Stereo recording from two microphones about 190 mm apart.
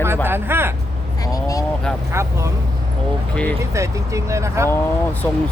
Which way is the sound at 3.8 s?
15° right (ahead or behind).